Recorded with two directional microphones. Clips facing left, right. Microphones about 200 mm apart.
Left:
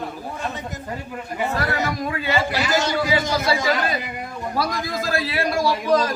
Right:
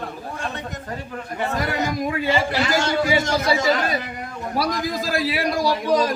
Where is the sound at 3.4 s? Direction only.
5° left (ahead or behind).